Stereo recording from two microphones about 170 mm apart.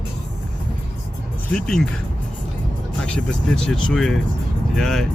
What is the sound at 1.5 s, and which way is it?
Speech, 5° left (ahead or behind).